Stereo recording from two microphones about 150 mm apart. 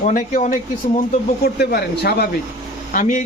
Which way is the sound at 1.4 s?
90° left.